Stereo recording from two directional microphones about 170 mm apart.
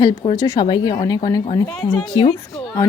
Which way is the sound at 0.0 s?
25° left (ahead or behind).